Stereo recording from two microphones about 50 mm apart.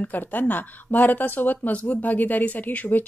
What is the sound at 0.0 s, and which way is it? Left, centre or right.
Speech, left.